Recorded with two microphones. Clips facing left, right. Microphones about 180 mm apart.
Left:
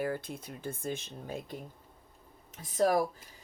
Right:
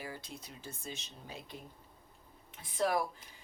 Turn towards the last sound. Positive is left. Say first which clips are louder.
# left 5 dB
turn(degrees=40)  # may be behind; listen again after turning